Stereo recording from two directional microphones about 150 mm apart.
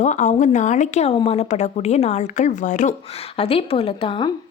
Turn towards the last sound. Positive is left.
turn(degrees=35)  # may be behind; listen again after turning